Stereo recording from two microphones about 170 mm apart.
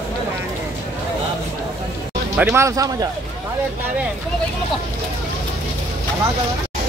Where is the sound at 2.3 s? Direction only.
5° right (ahead or behind).